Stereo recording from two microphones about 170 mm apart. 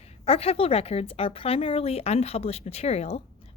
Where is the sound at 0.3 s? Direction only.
35° left (ahead or behind).